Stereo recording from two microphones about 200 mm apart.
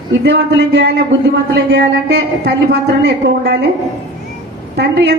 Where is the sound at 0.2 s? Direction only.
55° right (ahead or behind).